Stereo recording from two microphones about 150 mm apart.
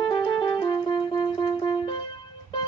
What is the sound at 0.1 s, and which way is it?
Music, 30° left (ahead or behind).